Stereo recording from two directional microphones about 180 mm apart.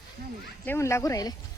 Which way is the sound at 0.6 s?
15° left (ahead or behind).